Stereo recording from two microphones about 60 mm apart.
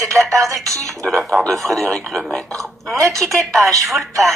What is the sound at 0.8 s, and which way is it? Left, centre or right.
Speech, centre.